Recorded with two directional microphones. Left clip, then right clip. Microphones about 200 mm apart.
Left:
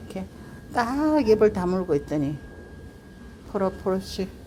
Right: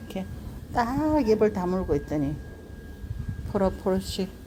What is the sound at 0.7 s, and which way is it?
A woman's voice, 10° left (ahead or behind).